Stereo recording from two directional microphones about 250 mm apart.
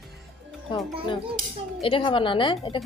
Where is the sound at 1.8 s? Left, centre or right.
Left.